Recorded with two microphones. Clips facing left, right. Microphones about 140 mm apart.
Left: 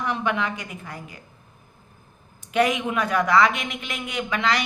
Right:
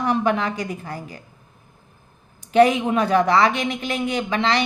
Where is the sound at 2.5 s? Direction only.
30° right (ahead or behind).